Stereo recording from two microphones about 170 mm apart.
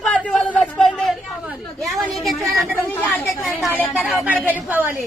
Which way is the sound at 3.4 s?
15° left (ahead or behind).